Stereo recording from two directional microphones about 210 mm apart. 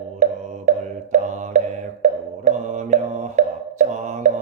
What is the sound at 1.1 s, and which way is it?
Music, 35° right (ahead or behind).